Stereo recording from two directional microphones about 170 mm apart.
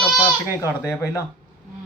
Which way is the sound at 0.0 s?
20° left (ahead or behind).